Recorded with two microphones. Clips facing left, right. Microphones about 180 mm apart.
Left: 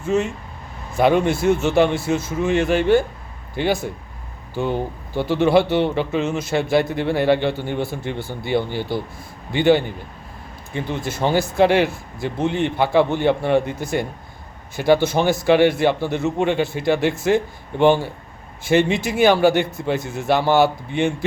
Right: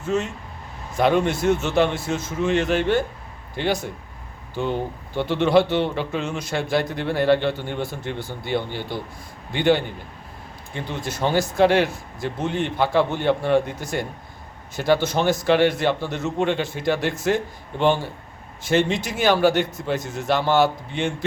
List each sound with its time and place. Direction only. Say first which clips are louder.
0.0 s a man's voice: left 4 dB; 10° left (ahead or behind)
4.5 s a man's voice: left 2 dB; 10° left (ahead or behind)
10.8 s speech: left 3 dB; 55° left (ahead or behind)
11.2 s a man's voice: left 1 dB; 10° left (ahead or behind)
14.8 s a man's voice: left 3 dB; 10° left (ahead or behind)